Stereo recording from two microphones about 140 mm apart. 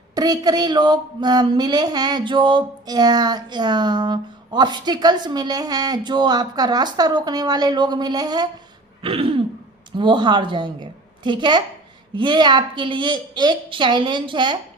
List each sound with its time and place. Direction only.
0.1 s speech: 30° right (ahead or behind)
9.0 s a woman's voice: 40° right (ahead or behind)